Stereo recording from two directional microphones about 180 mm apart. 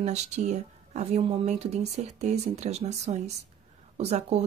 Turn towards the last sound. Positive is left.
turn(degrees=-35)  # may be behind; listen again after turning